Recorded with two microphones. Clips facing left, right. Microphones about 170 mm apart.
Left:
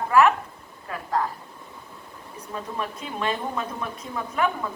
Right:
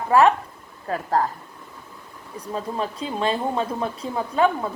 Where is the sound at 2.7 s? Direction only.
30° right (ahead or behind).